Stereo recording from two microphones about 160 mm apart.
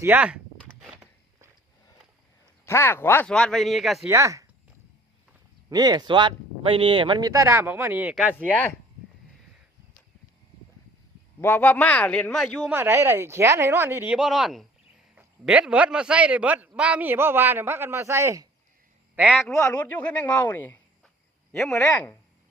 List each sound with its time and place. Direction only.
0.0 s a man's voice: 10° right (ahead or behind)
2.6 s a man's voice: 15° left (ahead or behind); by 4.0 s centre (ahead or behind)
4.0 s speech: 20° right (ahead or behind)
5.6 s speech: 25° right (ahead or behind)
8.1 s a man's voice: 10° left (ahead or behind)
11.3 s a man's voice: 15° left (ahead or behind)
12.7 s a man's voice: 15° right (ahead or behind)
19.1 s a man's voice: 5° right (ahead or behind)
19.7 s a man's voice: 10° left (ahead or behind)